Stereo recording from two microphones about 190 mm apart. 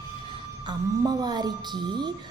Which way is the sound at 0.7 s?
20° right (ahead or behind).